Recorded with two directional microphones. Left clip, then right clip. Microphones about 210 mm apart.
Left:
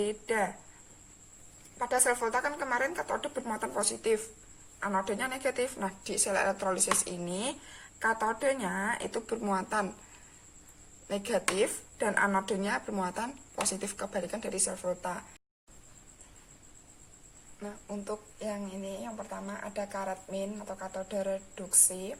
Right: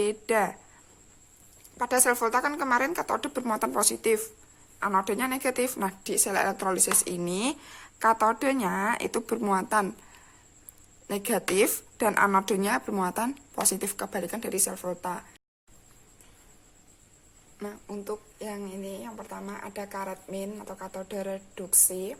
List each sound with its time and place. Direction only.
0.0 s speech: 50° right (ahead or behind)
1.8 s speech: 50° right (ahead or behind)
11.1 s speech: 50° right (ahead or behind)
17.6 s speech: 50° right (ahead or behind)